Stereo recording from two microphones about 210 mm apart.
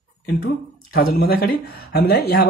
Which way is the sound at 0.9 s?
45° left (ahead or behind).